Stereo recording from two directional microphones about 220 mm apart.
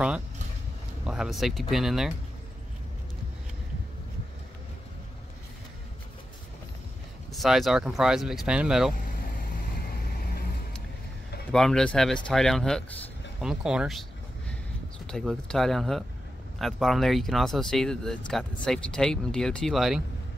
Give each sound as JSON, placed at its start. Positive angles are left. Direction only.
{"t": 1.0, "sound": "speech", "side_deg": 0}
{"t": 7.3, "sound": "speech", "side_deg": 0}
{"t": 9.8, "sound": "vehicle", "side_deg": 40}
{"t": 11.5, "sound": "speech", "side_deg": 5}
{"t": 15.0, "sound": "speech", "side_deg": 5}